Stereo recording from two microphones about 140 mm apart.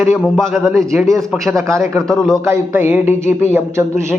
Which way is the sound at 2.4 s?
15° right (ahead or behind).